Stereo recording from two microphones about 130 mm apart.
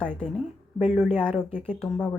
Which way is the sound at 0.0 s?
5° left (ahead or behind).